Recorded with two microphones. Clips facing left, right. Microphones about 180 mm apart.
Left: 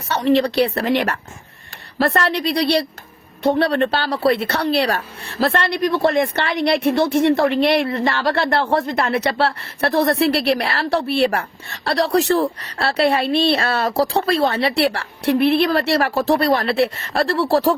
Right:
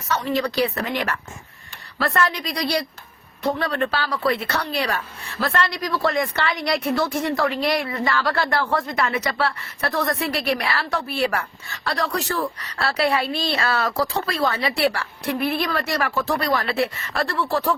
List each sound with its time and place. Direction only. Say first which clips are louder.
0.3 s a woman's voice: left 5 dB; 30° left (ahead or behind)
2.4 s a woman's voice: left 8 dB; 65° left (ahead or behind)
3.4 s a woman's voice: left 6 dB; 30° left (ahead or behind)
7.5 s a woman's voice: left 6 dB; 65° left (ahead or behind)
7.9 s a woman's voice: left 3 dB; 25° left (ahead or behind)
13.2 s a woman's voice: left 8 dB; 70° left (ahead or behind)
13.5 s a woman's voice: left 4 dB; 30° left (ahead or behind)